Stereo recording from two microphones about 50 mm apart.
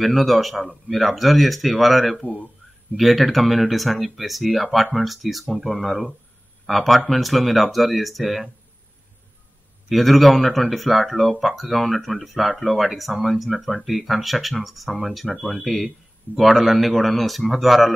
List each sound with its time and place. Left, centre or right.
0.0 s speech: centre
9.8 s speech: centre